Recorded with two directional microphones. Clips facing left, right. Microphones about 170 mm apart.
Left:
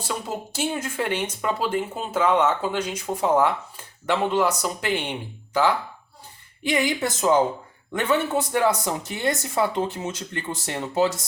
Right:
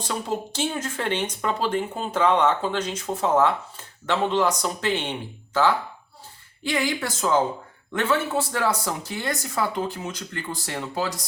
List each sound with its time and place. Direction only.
0.0 s speech: 10° left (ahead or behind)
6.6 s speech: 20° left (ahead or behind)